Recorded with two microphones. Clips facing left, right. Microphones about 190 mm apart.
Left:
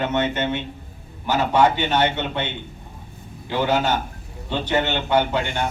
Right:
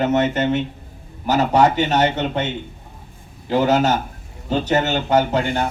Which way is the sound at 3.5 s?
40° right (ahead or behind).